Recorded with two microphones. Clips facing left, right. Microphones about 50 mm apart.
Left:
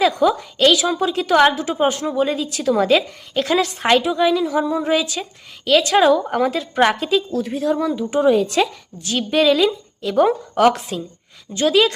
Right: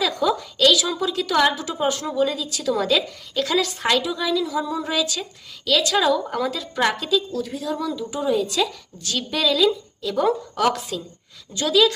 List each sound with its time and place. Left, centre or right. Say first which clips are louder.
0.0 s a woman's voice: left 5 dB; left
8.2 s a woman's voice: left 6 dB; left
9.0 s a woman's voice: left 7 dB; left